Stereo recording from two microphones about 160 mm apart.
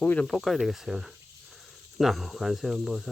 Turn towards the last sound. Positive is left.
turn(degrees=-5)  # may be behind; listen again after turning